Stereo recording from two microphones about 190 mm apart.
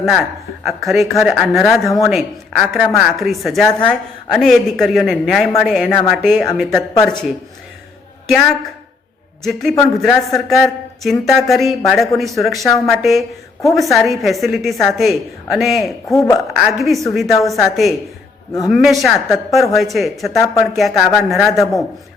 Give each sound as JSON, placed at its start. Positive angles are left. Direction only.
{"t": 0.0, "sound": "a woman's voice", "side_deg": 0}
{"t": 9.4, "sound": "a woman's voice", "side_deg": 0}
{"t": 16.0, "sound": "a woman's voice", "side_deg": 15}
{"t": 16.6, "sound": "a woman's voice", "side_deg": 0}